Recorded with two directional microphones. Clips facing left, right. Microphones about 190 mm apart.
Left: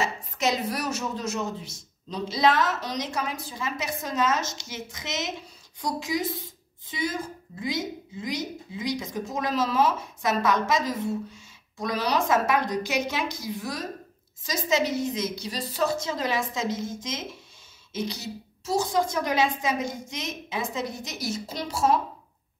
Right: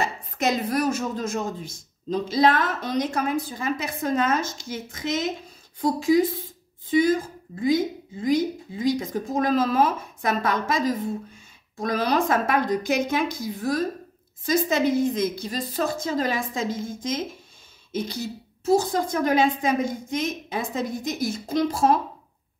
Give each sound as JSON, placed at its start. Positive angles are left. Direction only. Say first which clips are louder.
{"t": 0.0, "sound": "a woman's voice", "louder": "right 2 dB", "side_deg": -55}
{"t": 7.6, "sound": "a woman's voice", "louder": "right 8 dB", "side_deg": -50}